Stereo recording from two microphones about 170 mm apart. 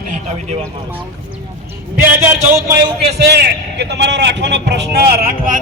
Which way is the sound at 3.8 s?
85° right.